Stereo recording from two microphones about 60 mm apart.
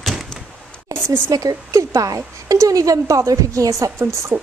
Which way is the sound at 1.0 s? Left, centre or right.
Right.